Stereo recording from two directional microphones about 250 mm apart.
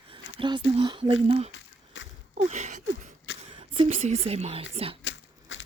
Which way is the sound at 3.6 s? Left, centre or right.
Right.